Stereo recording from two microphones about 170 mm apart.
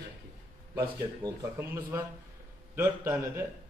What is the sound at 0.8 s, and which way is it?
A man's voice, 20° right (ahead or behind).